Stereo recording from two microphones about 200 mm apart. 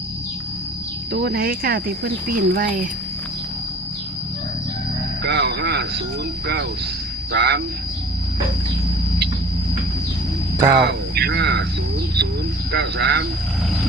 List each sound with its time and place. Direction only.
1.1 s speech: 50° right (ahead or behind)
5.2 s a sound: 55° right (ahead or behind)
7.3 s speech: 55° right (ahead or behind)
10.8 s speech: 55° right (ahead or behind)
12.7 s speech: 55° right (ahead or behind)